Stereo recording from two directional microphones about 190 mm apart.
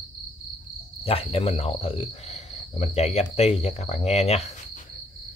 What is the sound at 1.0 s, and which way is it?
Speech, 30° left (ahead or behind).